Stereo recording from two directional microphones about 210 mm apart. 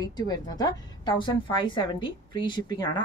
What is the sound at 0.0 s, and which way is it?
A woman's voice, 20° left (ahead or behind).